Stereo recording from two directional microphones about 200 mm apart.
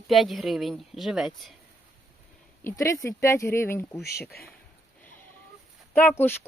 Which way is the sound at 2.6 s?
15° left (ahead or behind).